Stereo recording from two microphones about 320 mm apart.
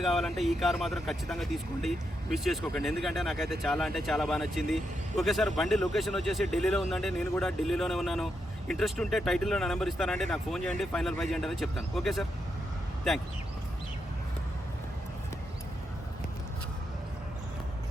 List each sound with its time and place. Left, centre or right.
0.0 s speech: centre